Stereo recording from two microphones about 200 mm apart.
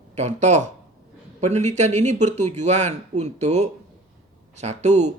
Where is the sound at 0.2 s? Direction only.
35° right (ahead or behind).